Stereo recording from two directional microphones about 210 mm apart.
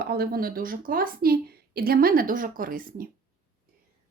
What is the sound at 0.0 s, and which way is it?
Speech, 50° right (ahead or behind).